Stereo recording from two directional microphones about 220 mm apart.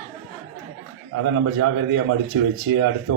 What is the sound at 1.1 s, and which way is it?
Speech, 90° right.